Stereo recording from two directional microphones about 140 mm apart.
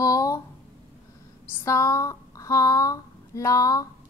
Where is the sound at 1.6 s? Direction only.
20° left (ahead or behind).